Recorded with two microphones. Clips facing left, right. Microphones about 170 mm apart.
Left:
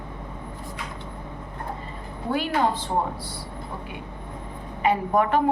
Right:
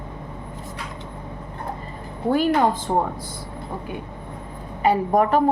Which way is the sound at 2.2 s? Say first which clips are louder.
Right 5 dB; 45° right (ahead or behind).